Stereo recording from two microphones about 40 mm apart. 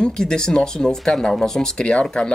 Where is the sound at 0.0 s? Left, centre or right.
Centre.